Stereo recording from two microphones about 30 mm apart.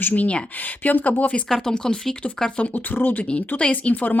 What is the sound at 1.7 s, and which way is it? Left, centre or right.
Speech, left.